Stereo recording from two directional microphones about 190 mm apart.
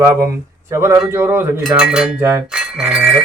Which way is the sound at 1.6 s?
5° right (ahead or behind).